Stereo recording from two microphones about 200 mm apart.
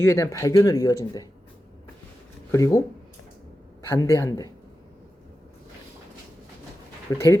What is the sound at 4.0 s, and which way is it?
Speech, 15° left (ahead or behind).